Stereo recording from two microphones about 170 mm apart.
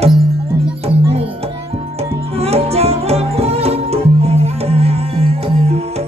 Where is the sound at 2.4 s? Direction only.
35° right (ahead or behind).